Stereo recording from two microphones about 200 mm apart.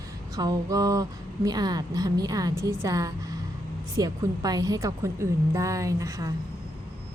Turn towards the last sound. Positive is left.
turn(degrees=-15)  # may be behind; listen again after turning